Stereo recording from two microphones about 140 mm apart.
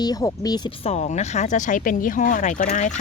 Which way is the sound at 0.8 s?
50° left (ahead or behind).